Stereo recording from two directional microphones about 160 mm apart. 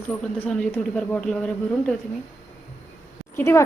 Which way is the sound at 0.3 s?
5° left (ahead or behind).